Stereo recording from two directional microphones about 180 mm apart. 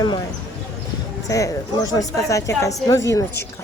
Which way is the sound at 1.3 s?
20° left (ahead or behind).